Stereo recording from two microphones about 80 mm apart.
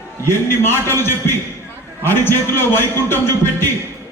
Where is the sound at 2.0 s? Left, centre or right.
Left.